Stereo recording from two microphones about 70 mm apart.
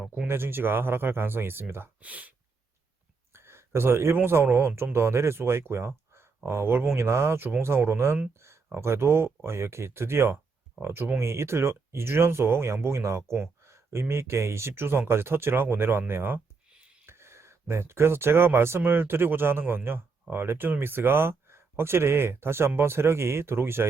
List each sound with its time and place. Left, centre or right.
0.3 s speech: right
3.3 s speech: right
6.1 s a sound: right
6.9 s speech: right